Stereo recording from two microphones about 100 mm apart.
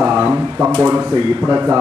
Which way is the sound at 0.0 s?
15° right (ahead or behind).